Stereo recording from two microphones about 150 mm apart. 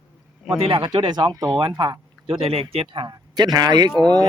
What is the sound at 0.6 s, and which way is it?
Speech, 35° right (ahead or behind).